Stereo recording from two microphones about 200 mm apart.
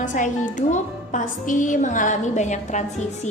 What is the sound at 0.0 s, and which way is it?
A woman's voice, 40° left (ahead or behind).